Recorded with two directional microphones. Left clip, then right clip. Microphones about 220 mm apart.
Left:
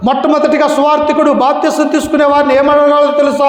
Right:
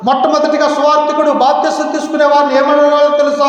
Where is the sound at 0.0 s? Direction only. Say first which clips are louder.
Even; 45° left (ahead or behind).